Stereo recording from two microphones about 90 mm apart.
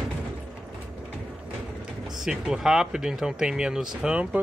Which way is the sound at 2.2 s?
5° right (ahead or behind).